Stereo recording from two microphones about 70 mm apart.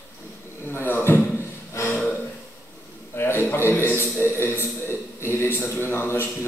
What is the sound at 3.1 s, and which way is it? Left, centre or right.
A man's voice, left.